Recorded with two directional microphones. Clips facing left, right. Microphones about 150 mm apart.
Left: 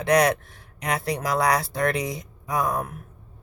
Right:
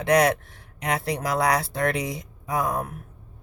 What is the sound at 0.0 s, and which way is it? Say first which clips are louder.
Speech: even; 25° right (ahead or behind).